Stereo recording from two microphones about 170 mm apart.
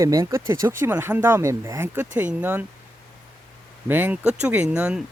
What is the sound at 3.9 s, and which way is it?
Speech, 10° right (ahead or behind).